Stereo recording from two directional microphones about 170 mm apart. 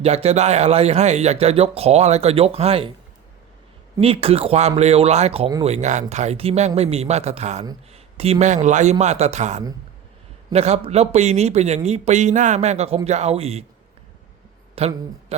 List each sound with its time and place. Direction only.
0.0 s speech: 35° right (ahead or behind)
4.0 s speech: 35° right (ahead or behind)
14.8 s a man's voice: 35° right (ahead or behind)